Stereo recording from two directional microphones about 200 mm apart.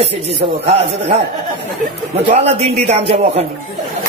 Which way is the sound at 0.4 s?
30° right (ahead or behind).